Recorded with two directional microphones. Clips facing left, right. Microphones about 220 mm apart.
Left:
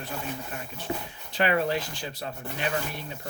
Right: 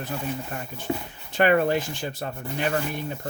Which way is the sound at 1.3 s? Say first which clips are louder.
Right 5 dB; 50° right (ahead or behind).